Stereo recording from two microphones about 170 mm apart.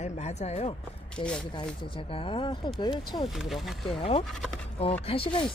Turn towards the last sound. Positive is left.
turn(degrees=30)  # may be behind; listen again after turning